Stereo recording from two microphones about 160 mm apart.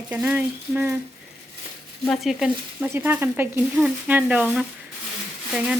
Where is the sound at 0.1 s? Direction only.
10° right (ahead or behind).